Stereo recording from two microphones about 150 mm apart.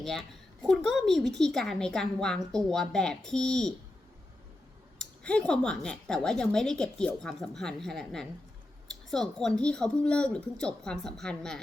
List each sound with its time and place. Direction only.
0.0 s speech: centre (ahead or behind)
4.9 s speech: 5° left (ahead or behind)